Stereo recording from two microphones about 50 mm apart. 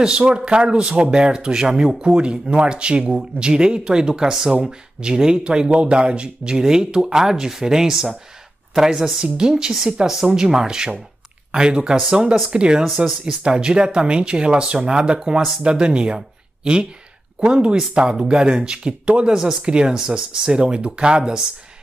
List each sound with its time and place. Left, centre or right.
0.2 s speech: right
12.8 s speech: centre
13.3 s speech: centre
19.3 s speech: centre